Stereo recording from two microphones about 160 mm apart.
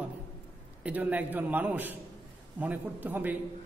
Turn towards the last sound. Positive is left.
turn(degrees=-10)  # may be behind; listen again after turning